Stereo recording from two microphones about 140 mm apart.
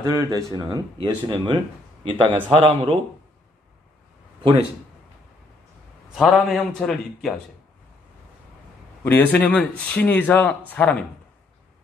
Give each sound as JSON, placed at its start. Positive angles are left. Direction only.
{"t": 0.2, "sound": "speech", "side_deg": -25}
{"t": 6.1, "sound": "a man's voice", "side_deg": 0}
{"t": 9.0, "sound": "speech", "side_deg": 15}